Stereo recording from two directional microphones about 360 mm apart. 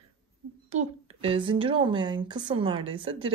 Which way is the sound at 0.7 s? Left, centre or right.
Centre.